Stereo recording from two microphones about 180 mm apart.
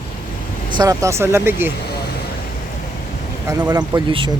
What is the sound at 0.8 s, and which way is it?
Speech, 20° right (ahead or behind).